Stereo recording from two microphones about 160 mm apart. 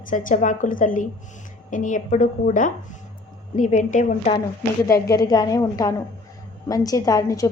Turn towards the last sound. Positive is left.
turn(degrees=20)  # may be behind; listen again after turning